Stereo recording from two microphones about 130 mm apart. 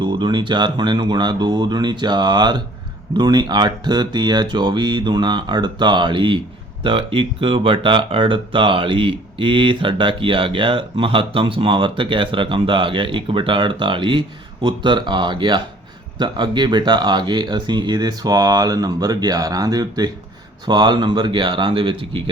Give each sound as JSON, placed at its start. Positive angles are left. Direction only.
{"t": 0.0, "sound": "speech", "side_deg": -35}